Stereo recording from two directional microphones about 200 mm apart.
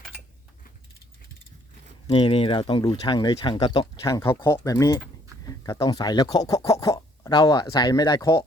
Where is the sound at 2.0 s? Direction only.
25° left (ahead or behind).